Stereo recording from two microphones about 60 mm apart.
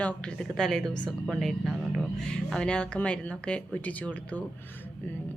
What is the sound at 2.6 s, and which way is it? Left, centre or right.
A woman's voice, centre.